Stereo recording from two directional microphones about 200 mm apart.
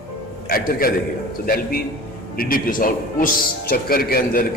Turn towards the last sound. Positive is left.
turn(degrees=50)  # may be behind; listen again after turning